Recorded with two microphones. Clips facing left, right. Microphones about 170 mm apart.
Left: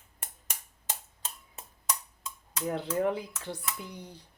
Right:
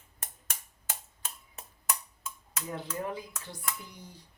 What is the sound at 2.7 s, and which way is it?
Speech, 65° left (ahead or behind).